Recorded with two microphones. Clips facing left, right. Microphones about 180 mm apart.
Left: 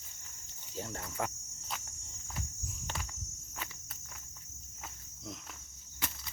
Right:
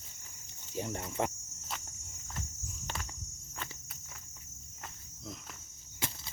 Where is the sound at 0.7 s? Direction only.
15° right (ahead or behind).